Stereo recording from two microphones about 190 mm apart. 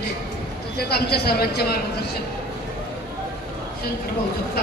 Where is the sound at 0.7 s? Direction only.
60° left (ahead or behind).